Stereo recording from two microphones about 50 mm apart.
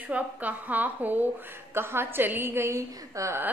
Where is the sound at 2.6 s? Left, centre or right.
Right.